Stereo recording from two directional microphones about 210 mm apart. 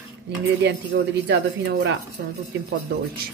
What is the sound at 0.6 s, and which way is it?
Speech, 55° right (ahead or behind).